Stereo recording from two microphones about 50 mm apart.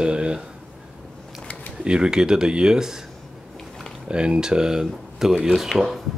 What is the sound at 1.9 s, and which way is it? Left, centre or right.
Speech, centre.